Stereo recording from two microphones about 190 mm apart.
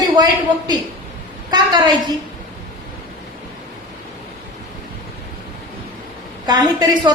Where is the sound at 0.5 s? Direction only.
25° right (ahead or behind).